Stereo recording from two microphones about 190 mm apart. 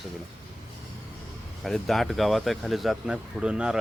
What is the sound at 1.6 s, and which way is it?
Speech, centre (ahead or behind).